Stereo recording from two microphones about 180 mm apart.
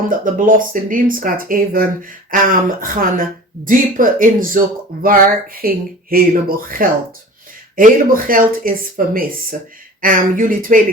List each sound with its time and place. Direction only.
0.1 s speech: 50° right (ahead or behind)